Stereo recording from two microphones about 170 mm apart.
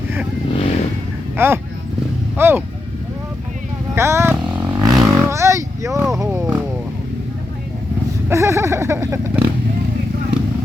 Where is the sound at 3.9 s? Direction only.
15° right (ahead or behind).